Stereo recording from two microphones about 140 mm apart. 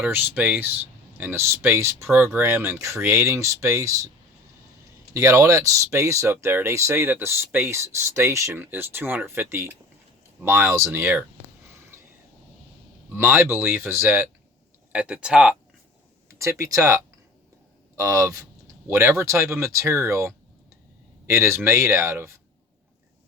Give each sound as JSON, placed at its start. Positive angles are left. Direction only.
{"t": 0.0, "sound": "speech", "side_deg": -15}
{"t": 5.1, "sound": "speech", "side_deg": -20}
{"t": 11.9, "sound": "a sound", "side_deg": -20}
{"t": 13.1, "sound": "speech", "side_deg": -15}
{"t": 16.4, "sound": "speech", "side_deg": -20}